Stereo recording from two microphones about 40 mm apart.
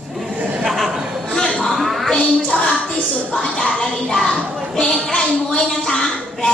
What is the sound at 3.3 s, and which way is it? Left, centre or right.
Speech, left.